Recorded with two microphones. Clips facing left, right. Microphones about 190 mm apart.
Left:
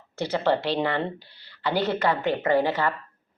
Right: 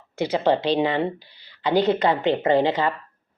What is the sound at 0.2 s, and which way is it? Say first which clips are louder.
Speech: right 3 dB; 15° right (ahead or behind).